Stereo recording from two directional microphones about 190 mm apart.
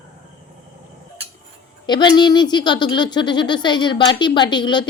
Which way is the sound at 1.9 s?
25° left (ahead or behind).